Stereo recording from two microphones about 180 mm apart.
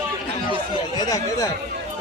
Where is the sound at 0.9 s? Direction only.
20° left (ahead or behind).